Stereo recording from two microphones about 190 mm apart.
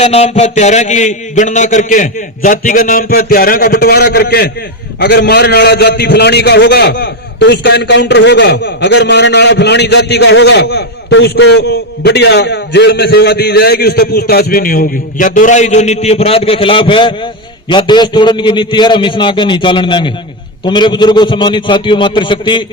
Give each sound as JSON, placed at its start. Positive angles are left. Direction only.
{"t": 0.0, "sound": "a man's voice", "side_deg": 35}